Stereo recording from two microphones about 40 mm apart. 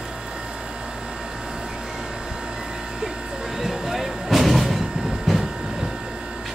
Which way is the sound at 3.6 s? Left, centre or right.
Centre.